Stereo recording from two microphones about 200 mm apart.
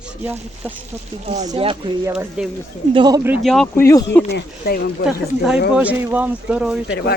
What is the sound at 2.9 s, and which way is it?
Speech, 20° right (ahead or behind).